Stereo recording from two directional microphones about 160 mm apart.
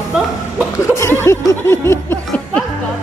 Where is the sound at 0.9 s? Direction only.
15° left (ahead or behind).